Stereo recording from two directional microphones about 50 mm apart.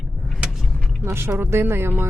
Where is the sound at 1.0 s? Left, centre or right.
Right.